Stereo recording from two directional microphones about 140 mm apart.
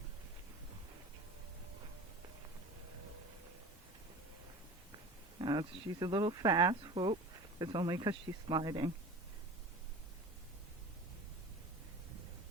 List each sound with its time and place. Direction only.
5.4 s speech: 30° right (ahead or behind)